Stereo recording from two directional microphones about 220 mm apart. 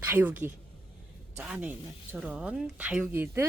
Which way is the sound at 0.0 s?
10° right (ahead or behind).